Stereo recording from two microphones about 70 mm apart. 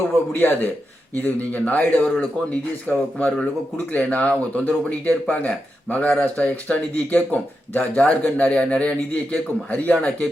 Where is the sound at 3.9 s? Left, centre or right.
Left.